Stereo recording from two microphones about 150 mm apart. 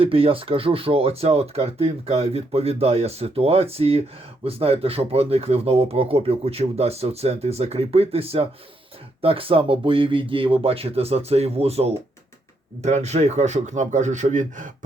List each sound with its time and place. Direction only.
0.0 s a man's voice: 40° right (ahead or behind); by 14.8 s 60° right (ahead or behind)